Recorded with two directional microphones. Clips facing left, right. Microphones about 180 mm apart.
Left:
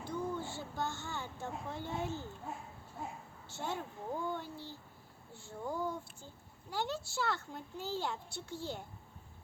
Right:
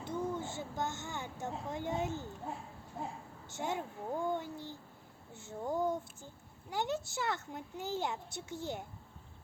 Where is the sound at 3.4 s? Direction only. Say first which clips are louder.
Right 3 dB; 15° right (ahead or behind).